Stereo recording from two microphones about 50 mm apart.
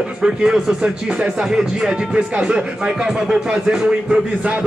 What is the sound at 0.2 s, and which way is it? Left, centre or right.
Speech, centre.